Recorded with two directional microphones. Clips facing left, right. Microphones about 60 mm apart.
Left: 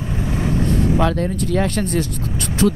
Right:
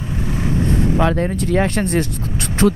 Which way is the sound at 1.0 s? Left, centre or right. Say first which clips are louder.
Right 1 dB; right.